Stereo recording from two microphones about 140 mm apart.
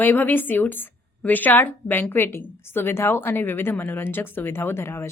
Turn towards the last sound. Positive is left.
turn(degrees=20)  # may be behind; listen again after turning